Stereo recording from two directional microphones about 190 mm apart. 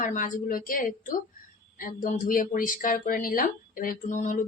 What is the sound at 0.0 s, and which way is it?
Speech, 45° left (ahead or behind).